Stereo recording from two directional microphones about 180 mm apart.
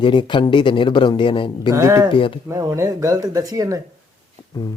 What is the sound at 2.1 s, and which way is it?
Speech, 30° left (ahead or behind).